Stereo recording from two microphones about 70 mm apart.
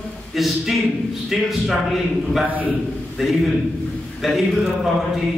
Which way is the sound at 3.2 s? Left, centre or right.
Centre.